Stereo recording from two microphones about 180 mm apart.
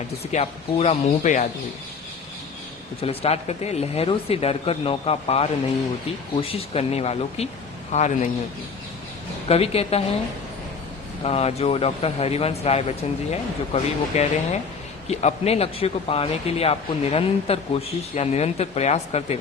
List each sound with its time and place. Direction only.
0.3 s speech: 35° left (ahead or behind)
3.0 s speech: 35° left (ahead or behind)
9.5 s speech: 35° left (ahead or behind)
11.2 s speech: 35° left (ahead or behind)